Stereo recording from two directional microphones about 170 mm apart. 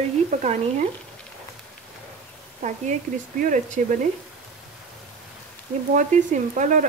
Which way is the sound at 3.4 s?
50° right (ahead or behind).